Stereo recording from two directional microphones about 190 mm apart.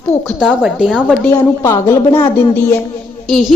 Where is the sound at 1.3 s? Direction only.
15° left (ahead or behind).